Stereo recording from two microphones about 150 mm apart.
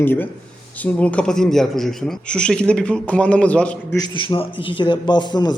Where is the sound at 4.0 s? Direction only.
30° left (ahead or behind).